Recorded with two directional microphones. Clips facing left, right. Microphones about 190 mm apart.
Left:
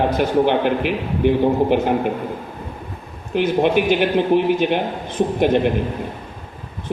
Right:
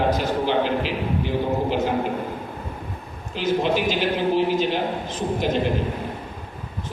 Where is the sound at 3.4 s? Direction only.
60° left (ahead or behind).